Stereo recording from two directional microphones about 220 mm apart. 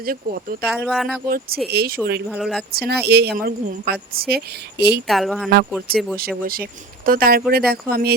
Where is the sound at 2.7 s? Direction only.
45° right (ahead or behind).